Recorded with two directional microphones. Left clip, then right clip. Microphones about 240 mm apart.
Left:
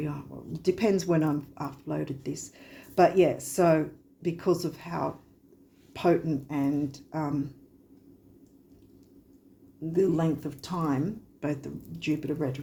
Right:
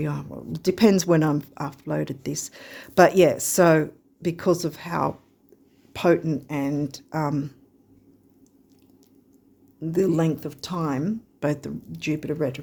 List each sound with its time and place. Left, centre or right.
0.0 s speech: right
9.9 s speech: right